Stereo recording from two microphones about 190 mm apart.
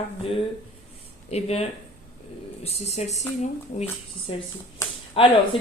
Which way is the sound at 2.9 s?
35° left (ahead or behind).